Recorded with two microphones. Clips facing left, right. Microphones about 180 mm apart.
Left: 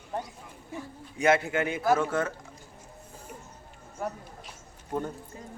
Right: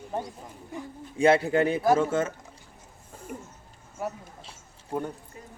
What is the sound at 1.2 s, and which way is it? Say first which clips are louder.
A man's voice: right 4 dB; 35° right (ahead or behind).